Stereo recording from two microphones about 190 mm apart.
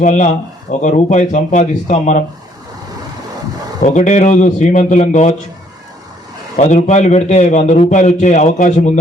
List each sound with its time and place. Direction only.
0.0 s a man's voice: 40° left (ahead or behind)
3.8 s a man's voice: 40° left (ahead or behind)
6.6 s a man's voice: 35° left (ahead or behind)